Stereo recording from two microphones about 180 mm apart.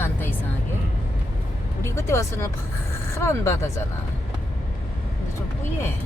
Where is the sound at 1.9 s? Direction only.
15° left (ahead or behind).